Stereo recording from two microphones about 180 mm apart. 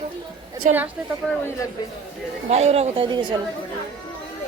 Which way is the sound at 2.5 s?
35° right (ahead or behind).